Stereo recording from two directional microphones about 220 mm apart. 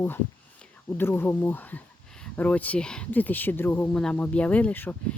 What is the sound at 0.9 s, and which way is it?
Speech, 10° left (ahead or behind).